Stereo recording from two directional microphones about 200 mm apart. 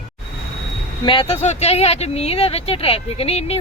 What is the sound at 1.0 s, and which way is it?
Speech, 25° left (ahead or behind).